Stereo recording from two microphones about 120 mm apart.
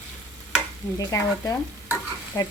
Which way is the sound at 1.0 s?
30° left (ahead or behind).